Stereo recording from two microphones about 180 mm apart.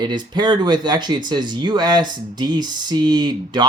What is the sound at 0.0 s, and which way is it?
Speech, 25° right (ahead or behind).